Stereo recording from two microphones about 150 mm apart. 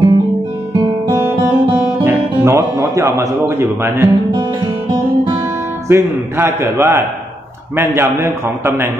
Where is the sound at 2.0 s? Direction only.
20° right (ahead or behind).